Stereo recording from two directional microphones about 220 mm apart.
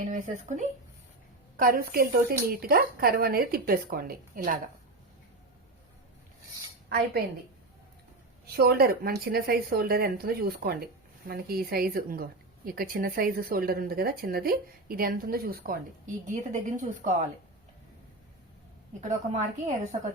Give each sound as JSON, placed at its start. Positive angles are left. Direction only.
{"t": 0.0, "sound": "speech", "side_deg": -35}
{"t": 6.8, "sound": "a woman's voice", "side_deg": -45}
{"t": 8.5, "sound": "a woman's voice", "side_deg": -45}
{"t": 19.0, "sound": "speech", "side_deg": -35}